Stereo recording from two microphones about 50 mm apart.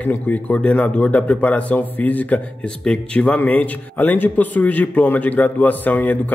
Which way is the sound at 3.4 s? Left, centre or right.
Left.